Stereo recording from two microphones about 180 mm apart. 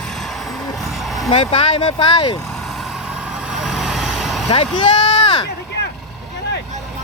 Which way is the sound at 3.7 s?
Centre (ahead or behind).